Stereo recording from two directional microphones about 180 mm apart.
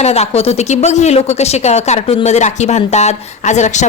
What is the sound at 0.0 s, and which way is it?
A woman's voice, 35° left (ahead or behind).